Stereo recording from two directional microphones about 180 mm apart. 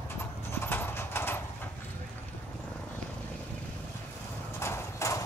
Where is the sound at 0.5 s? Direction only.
10° left (ahead or behind).